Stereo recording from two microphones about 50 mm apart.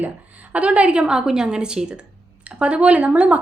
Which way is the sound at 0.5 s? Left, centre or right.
Right.